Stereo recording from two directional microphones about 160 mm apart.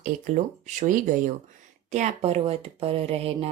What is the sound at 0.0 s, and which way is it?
Speech, 50° right (ahead or behind).